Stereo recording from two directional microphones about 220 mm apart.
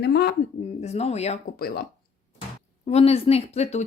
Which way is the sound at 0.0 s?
45° left (ahead or behind).